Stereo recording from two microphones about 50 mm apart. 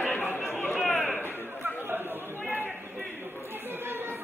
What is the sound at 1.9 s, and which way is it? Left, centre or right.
Chatter, right.